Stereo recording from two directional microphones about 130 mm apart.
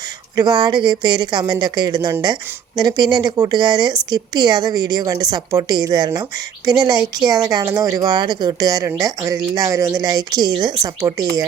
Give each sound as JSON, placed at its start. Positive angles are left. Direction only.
{"t": 0.3, "sound": "a woman's voice", "side_deg": -30}